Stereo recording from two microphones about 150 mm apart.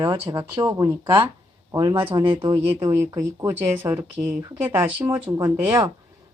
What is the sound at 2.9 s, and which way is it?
A woman's voice, 20° right (ahead or behind).